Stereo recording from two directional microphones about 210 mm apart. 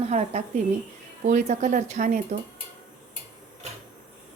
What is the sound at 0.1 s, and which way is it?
Speech, 30° right (ahead or behind).